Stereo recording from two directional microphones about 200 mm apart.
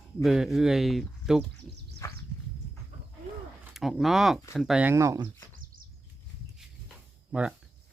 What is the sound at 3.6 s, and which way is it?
Speech, centre (ahead or behind).